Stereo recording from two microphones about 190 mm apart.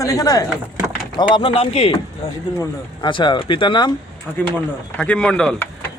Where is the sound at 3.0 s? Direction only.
25° left (ahead or behind).